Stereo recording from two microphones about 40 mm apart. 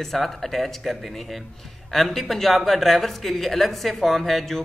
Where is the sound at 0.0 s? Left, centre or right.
Centre.